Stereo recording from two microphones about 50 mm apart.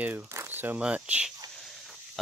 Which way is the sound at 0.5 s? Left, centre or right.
Right.